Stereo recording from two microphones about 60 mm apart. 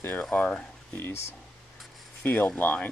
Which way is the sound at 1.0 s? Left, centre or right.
Left.